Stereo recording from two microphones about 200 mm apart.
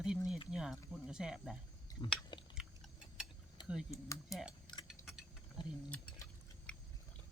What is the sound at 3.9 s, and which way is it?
Speech, 15° left (ahead or behind).